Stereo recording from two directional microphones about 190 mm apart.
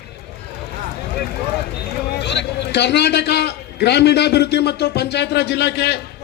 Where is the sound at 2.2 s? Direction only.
65° left (ahead or behind).